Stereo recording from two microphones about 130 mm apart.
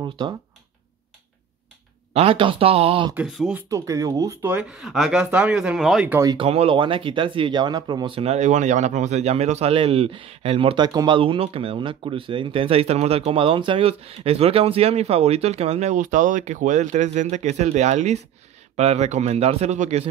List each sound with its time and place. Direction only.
0.2 s speech: 35° right (ahead or behind)
2.1 s speech: 45° right (ahead or behind)
3.3 s speech: centre (ahead or behind)
3.7 s speech: 25° right (ahead or behind)
4.6 s speech: 5° right (ahead or behind)
6.2 s speech: 40° right (ahead or behind)
8.2 s speech: 60° right (ahead or behind)
10.9 s speech: 30° right (ahead or behind)
11.1 s speech: 45° right (ahead or behind); by 20.1 s 60° right (ahead or behind)